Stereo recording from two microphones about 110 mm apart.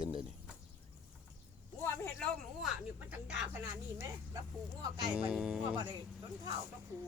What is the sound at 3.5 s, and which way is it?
Speech, 20° right (ahead or behind).